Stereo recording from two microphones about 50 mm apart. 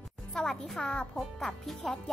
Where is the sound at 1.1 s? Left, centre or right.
Centre.